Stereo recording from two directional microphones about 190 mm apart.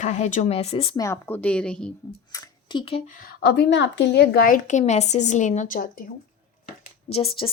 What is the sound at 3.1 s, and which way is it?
A woman's voice, 50° left (ahead or behind).